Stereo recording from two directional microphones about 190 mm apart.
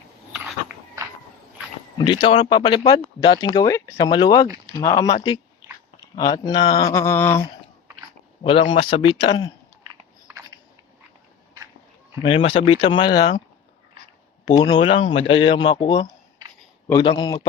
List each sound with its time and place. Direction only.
2.0 s speech: 20° left (ahead or behind)
6.9 s a sound: 15° left (ahead or behind)
8.4 s speech: 30° left (ahead or behind)
12.2 s speech: 25° left (ahead or behind)
14.4 s speech: 25° left (ahead or behind)